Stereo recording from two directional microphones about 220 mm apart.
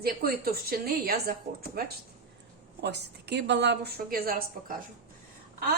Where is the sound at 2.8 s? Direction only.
50° right (ahead or behind).